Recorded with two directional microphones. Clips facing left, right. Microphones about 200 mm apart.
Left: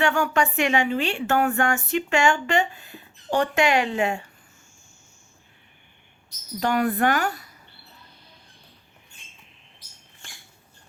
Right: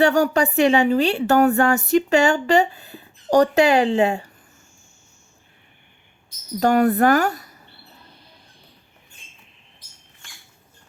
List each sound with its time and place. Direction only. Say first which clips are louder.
0.0 s a woman's voice: right 5 dB; 40° right (ahead or behind)
6.6 s a woman's voice: right 6 dB; 40° right (ahead or behind)